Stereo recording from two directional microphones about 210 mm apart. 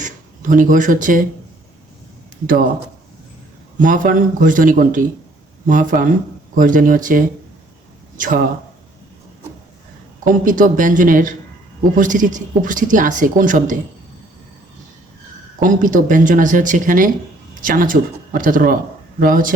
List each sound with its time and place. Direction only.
0.0 s speech: 40° right (ahead or behind)
3.8 s speech: 40° right (ahead or behind)
10.2 s speech: 40° right (ahead or behind)
15.6 s speech: 40° right (ahead or behind)